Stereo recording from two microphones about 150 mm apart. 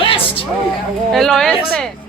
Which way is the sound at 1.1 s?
Centre (ahead or behind).